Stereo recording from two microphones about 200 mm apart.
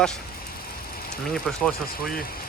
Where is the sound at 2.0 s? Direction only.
50° left (ahead or behind).